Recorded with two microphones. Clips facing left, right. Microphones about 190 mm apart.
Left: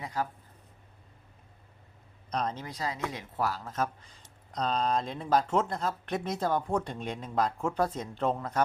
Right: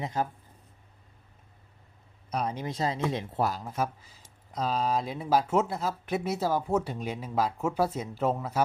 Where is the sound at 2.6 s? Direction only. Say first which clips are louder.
Right 5 dB; 25° right (ahead or behind).